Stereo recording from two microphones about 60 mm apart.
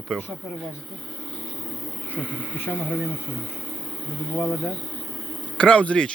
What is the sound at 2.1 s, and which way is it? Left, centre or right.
Speech, left.